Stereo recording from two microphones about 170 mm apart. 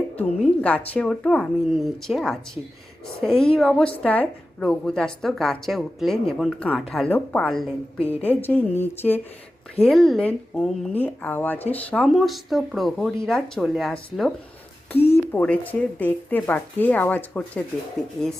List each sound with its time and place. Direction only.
0.2 s a woman's voice: 5° left (ahead or behind)
9.8 s a woman's voice: centre (ahead or behind)
14.9 s a sound: 35° left (ahead or behind)
15.3 s speech: 10° left (ahead or behind)